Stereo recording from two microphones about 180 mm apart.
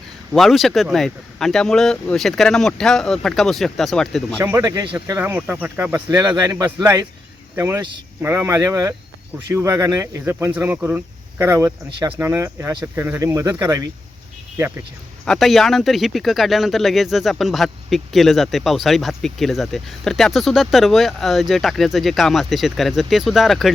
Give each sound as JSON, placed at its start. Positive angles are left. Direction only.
{"t": 0.3, "sound": "speech", "side_deg": 0}
{"t": 4.4, "sound": "speech", "side_deg": -10}
{"t": 5.0, "sound": "speech", "side_deg": -10}
{"t": 11.9, "sound": "speech", "side_deg": -25}
{"t": 12.1, "sound": "speech", "side_deg": -10}
{"t": 15.2, "sound": "speech", "side_deg": 0}